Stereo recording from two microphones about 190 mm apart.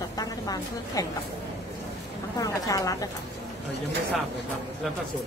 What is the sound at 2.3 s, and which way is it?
Speech, 15° left (ahead or behind).